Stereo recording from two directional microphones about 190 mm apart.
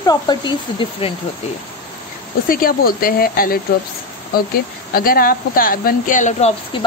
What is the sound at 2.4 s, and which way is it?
Speech, 50° left (ahead or behind).